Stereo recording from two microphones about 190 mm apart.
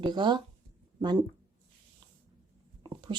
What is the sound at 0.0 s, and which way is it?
Speech, 25° right (ahead or behind).